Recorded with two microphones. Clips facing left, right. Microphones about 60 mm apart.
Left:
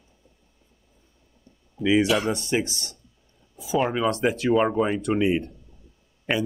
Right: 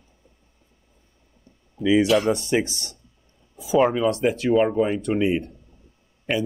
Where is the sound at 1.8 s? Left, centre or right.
Centre.